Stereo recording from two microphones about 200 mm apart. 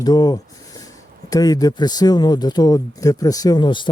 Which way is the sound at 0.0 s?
20° left (ahead or behind).